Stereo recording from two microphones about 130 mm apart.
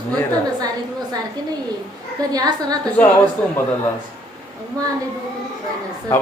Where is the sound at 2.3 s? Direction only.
30° right (ahead or behind).